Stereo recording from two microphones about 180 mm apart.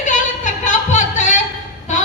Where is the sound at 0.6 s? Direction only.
45° left (ahead or behind).